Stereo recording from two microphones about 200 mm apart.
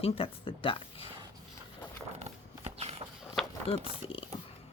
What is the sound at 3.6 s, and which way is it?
Speech, 25° left (ahead or behind).